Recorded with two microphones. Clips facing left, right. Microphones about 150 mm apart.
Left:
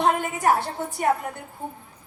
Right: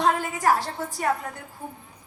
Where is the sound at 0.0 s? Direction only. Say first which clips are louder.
Left 1 dB; 25° left (ahead or behind).